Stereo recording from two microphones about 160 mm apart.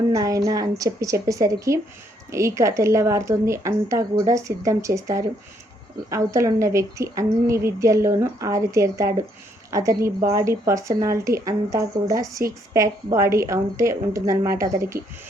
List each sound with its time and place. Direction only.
0.1 s a woman's voice: 20° right (ahead or behind)